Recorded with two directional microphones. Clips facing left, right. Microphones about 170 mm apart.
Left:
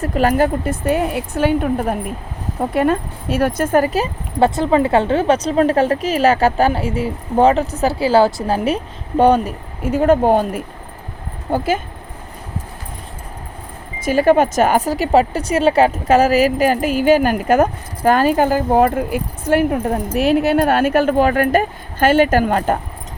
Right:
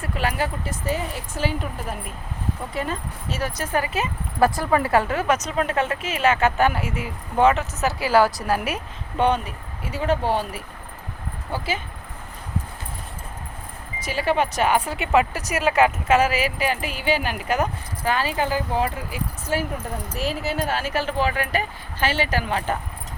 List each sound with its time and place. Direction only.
0.0 s speech: 45° left (ahead or behind)
14.0 s speech: 50° left (ahead or behind)